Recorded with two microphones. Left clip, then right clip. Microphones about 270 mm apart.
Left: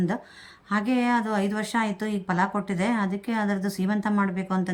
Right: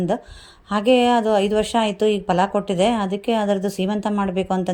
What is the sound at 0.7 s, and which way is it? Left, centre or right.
Speech, centre.